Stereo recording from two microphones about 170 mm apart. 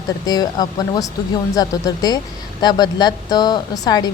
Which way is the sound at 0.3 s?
25° left (ahead or behind).